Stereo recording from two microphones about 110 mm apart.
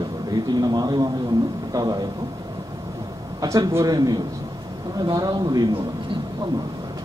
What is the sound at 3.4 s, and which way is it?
A man's voice, 30° right (ahead or behind).